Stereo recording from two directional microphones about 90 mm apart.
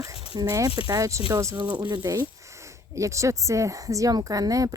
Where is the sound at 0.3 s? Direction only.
40° right (ahead or behind).